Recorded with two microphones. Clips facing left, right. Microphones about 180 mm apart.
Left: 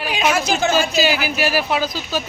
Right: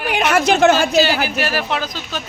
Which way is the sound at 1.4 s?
10° left (ahead or behind).